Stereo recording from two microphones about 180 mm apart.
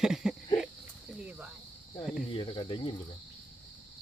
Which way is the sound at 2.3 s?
30° left (ahead or behind).